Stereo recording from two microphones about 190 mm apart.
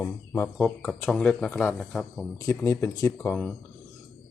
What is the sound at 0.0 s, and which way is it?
Bird, 10° left (ahead or behind).